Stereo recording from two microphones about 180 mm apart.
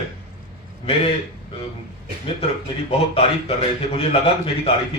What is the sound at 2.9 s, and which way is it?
A man's voice, 30° left (ahead or behind).